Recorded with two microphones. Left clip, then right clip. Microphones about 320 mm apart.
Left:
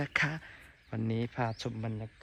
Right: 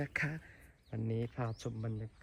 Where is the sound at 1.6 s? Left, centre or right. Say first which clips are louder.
Left 4 dB; left.